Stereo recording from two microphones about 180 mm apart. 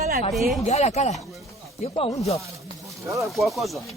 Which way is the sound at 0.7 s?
40° left (ahead or behind).